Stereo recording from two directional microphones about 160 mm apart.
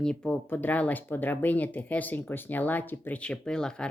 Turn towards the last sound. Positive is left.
turn(degrees=5)  # may be behind; listen again after turning